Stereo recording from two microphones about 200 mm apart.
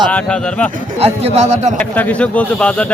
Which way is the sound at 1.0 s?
30° right (ahead or behind).